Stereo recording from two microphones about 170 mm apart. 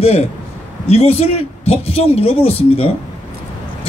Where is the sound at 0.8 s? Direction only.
35° left (ahead or behind).